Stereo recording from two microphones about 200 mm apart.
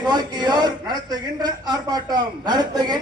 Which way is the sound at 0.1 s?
20° right (ahead or behind).